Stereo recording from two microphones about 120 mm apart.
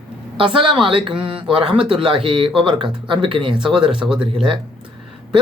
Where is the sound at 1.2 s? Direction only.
10° right (ahead or behind).